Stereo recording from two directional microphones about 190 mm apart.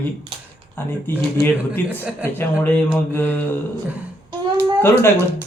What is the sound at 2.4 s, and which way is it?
A man's voice, 10° left (ahead or behind).